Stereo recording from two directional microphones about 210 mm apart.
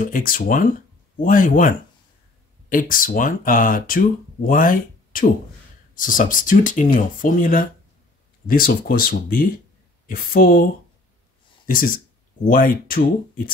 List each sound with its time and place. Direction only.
0.0 s speech: 40° left (ahead or behind)